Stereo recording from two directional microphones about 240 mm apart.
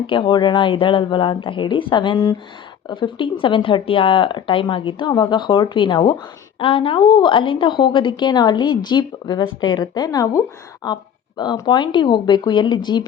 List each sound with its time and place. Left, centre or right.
0.1 s speech: left